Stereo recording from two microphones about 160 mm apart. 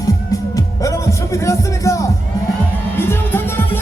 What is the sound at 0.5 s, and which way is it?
Music, 20° left (ahead or behind).